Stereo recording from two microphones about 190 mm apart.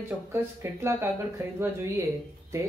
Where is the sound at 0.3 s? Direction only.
15° right (ahead or behind).